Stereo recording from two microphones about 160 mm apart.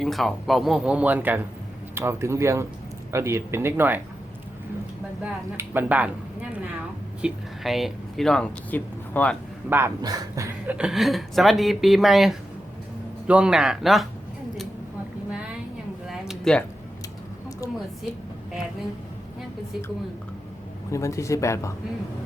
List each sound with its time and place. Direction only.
0.0 s speech: centre (ahead or behind)
5.2 s speech: 10° right (ahead or behind)
7.2 s speech: 5° right (ahead or behind)
9.6 s speech: 15° right (ahead or behind)
10.0 s a sound: 20° right (ahead or behind)
10.8 s speech: 5° right (ahead or behind)
16.0 s a sound: centre (ahead or behind)
20.9 s speech: 20° left (ahead or behind)